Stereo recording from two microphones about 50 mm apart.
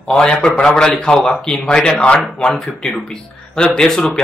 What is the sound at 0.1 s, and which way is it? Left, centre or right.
A man's voice, centre.